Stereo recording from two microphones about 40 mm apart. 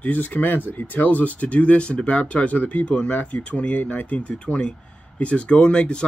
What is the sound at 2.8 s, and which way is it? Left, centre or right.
Speech, left.